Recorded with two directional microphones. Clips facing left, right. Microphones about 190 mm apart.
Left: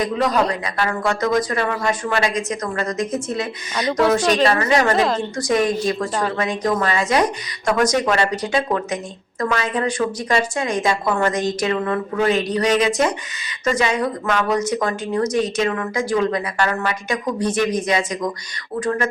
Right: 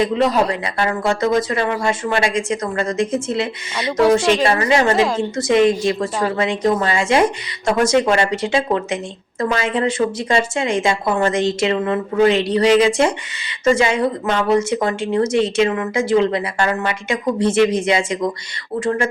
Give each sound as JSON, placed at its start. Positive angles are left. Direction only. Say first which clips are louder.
{"t": 0.0, "sound": "speech", "louder": "right 3 dB", "side_deg": -25}
{"t": 4.7, "sound": "speech", "louder": "right 2 dB", "side_deg": -25}
{"t": 4.9, "sound": "a woman's voice", "louder": "right 2 dB", "side_deg": -10}
{"t": 5.4, "sound": "speech", "louder": "right 5 dB", "side_deg": -25}